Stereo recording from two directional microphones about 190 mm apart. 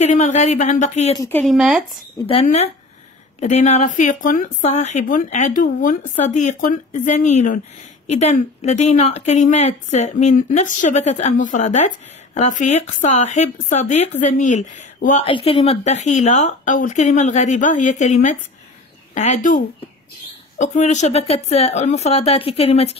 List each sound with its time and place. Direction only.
0.0 s speech: 40° left (ahead or behind)
1.1 s speech: 15° left (ahead or behind)
1.4 s speech: centre (ahead or behind)
2.4 s speech: 35° left (ahead or behind)